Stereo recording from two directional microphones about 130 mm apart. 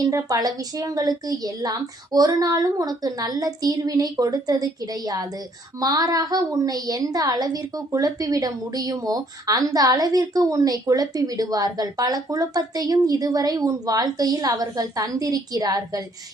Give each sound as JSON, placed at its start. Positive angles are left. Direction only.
{"t": 0.0, "sound": "a woman's voice", "side_deg": -25}